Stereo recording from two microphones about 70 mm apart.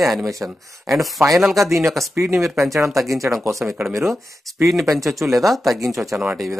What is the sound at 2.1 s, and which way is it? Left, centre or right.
Speech, right.